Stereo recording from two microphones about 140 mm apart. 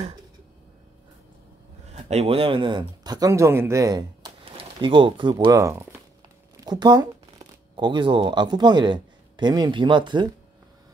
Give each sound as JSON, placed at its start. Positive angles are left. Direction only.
{"t": 1.9, "sound": "speech", "side_deg": -50}
{"t": 4.5, "sound": "a man's voice", "side_deg": -40}